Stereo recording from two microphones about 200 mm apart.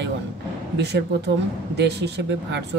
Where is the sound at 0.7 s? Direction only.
55° right (ahead or behind).